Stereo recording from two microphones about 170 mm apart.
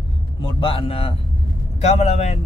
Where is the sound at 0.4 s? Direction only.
30° left (ahead or behind).